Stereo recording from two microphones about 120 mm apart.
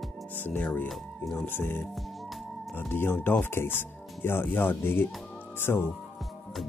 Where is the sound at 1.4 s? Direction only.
15° left (ahead or behind).